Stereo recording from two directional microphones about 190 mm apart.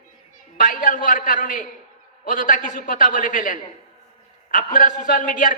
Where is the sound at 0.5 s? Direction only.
45° left (ahead or behind).